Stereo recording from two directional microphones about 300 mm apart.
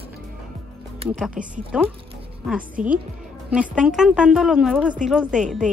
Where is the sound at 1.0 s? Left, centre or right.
Centre.